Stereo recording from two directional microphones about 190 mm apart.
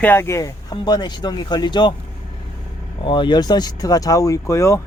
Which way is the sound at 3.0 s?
25° left (ahead or behind).